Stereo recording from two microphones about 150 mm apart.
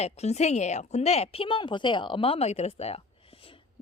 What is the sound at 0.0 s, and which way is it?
A woman's voice, 45° left (ahead or behind).